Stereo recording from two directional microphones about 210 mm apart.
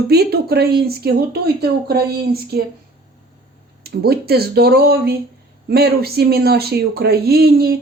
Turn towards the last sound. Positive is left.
turn(degrees=-45)  # may be behind; listen again after turning